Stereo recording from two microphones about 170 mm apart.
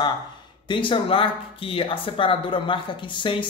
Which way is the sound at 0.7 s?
30° left (ahead or behind).